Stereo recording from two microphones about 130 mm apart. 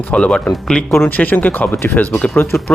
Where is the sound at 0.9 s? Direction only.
15° left (ahead or behind).